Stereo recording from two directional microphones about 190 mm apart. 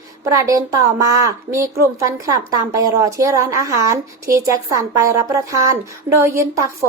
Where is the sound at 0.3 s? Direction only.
15° right (ahead or behind).